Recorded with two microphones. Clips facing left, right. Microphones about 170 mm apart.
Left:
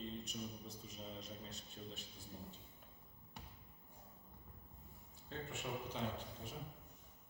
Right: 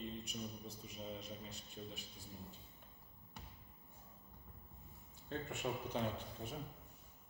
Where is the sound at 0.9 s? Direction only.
10° right (ahead or behind).